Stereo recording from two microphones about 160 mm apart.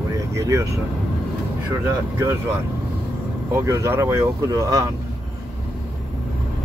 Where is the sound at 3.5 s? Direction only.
20° right (ahead or behind).